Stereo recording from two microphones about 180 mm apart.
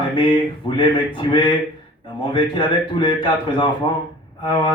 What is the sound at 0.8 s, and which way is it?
A man's voice, 25° left (ahead or behind).